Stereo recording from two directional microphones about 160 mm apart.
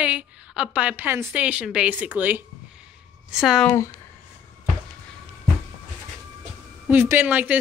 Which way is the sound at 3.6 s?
20° left (ahead or behind).